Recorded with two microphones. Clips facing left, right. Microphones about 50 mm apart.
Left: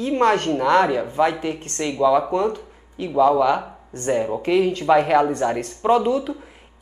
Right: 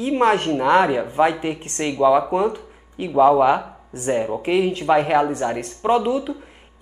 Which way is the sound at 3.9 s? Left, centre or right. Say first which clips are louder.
Even; centre.